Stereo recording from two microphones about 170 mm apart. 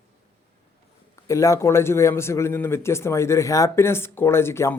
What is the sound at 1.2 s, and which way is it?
Speech, 20° left (ahead or behind).